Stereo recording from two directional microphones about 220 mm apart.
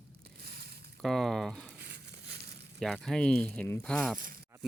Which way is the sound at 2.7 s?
Centre (ahead or behind).